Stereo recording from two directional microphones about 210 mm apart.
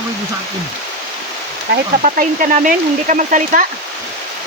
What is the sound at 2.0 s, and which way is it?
Speech, 40° right (ahead or behind).